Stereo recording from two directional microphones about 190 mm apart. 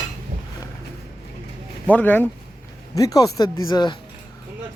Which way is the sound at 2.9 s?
20° left (ahead or behind).